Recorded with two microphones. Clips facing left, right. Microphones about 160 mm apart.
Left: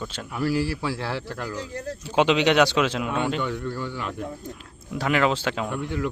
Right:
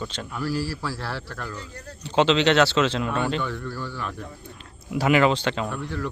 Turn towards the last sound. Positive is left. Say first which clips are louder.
# left 2 dB
turn(degrees=15)  # may be behind; listen again after turning